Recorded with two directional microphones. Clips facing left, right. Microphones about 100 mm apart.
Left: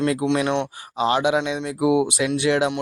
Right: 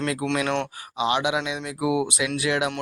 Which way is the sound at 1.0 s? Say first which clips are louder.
Left 4 dB; 35° left (ahead or behind).